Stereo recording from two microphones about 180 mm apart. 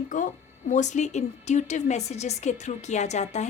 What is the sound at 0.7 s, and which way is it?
A woman's voice, 40° left (ahead or behind).